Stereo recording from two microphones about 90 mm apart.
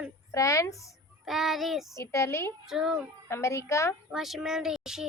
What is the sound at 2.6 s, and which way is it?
Speech, 5° right (ahead or behind).